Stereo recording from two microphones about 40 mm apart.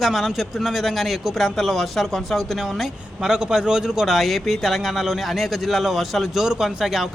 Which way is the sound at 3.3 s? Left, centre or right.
Centre.